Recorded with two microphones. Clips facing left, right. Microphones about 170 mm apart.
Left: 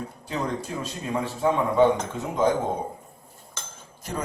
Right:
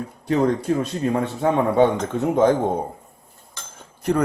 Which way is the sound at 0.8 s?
60° right (ahead or behind).